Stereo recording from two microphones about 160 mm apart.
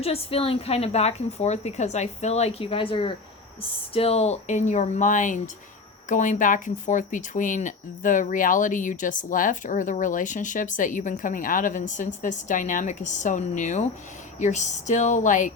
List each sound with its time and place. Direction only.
0.0 s a woman's voice: 40° left (ahead or behind)